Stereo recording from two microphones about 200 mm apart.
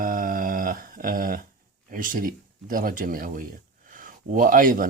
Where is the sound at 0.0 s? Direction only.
45° right (ahead or behind).